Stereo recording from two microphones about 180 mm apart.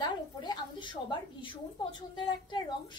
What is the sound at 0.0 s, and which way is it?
A woman's voice, 25° left (ahead or behind).